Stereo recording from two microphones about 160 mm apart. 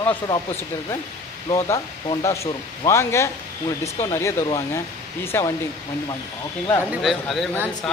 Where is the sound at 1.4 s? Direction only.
20° left (ahead or behind).